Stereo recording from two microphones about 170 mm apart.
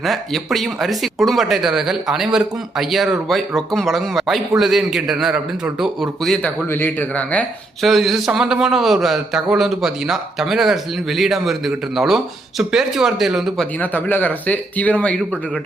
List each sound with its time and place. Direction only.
0.0 s speech: centre (ahead or behind)
13.9 s speech: 10° left (ahead or behind)